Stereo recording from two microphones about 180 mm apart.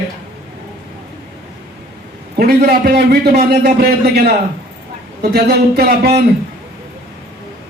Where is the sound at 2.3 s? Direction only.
60° right (ahead or behind).